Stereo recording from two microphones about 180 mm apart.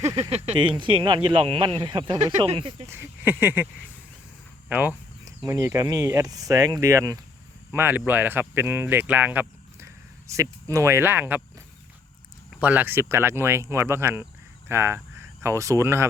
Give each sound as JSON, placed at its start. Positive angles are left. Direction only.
{"t": 0.2, "sound": "speech", "side_deg": -35}
{"t": 2.8, "sound": "speech", "side_deg": -10}
{"t": 4.7, "sound": "a sound", "side_deg": -10}
{"t": 5.4, "sound": "speech", "side_deg": -20}
{"t": 12.5, "sound": "speech", "side_deg": -10}